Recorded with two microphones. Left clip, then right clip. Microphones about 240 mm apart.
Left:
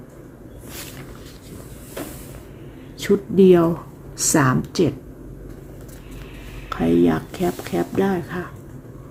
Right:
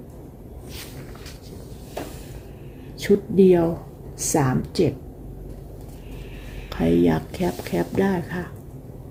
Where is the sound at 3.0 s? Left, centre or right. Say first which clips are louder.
Left 1 dB; centre.